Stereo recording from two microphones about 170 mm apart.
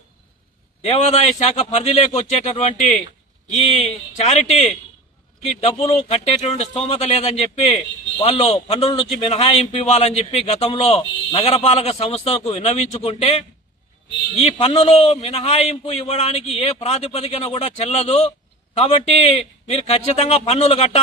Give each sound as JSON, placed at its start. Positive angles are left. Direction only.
{"t": 0.8, "sound": "a man's voice", "side_deg": 40}